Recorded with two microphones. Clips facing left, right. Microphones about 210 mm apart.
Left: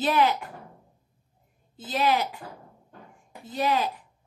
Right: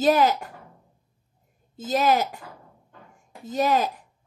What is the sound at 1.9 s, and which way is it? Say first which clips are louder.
Speech: right 3 dB; 45° right (ahead or behind).